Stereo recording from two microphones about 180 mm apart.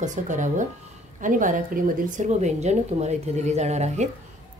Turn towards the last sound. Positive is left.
turn(degrees=-40)  # may be behind; listen again after turning